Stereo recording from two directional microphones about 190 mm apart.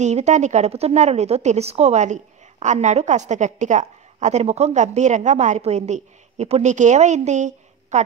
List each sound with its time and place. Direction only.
0.0 s a woman's voice: 35° right (ahead or behind)